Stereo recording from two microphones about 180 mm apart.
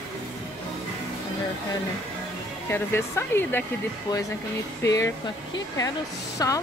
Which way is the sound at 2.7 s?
15° left (ahead or behind).